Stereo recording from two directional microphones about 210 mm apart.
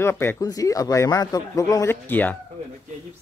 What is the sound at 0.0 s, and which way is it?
Speech, 10° left (ahead or behind).